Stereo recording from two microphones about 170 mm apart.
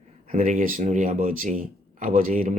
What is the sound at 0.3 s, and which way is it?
Speech, 55° right (ahead or behind).